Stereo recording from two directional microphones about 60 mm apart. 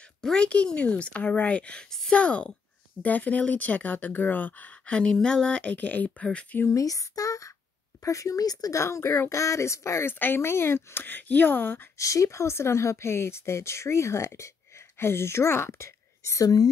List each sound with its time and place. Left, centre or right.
0.0 s speech: centre
5.7 s speech: left
6.7 s speech: left
8.7 s speech: left
10.1 s speech: left
12.0 s speech: left
16.3 s speech: left